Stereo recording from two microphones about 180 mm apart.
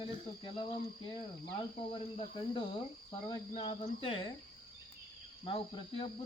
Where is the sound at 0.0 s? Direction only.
30° left (ahead or behind).